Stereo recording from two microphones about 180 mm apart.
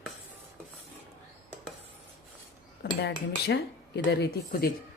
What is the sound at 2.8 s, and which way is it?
Cutlery, 65° left (ahead or behind).